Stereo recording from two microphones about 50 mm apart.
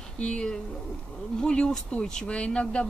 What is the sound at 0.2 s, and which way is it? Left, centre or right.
Speech, centre.